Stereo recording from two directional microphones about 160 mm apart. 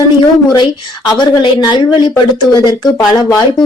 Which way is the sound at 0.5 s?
25° left (ahead or behind).